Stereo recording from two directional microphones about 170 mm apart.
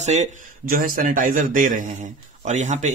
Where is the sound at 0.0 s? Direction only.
40° right (ahead or behind).